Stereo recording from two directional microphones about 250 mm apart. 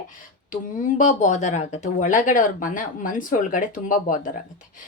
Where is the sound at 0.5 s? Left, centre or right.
Left.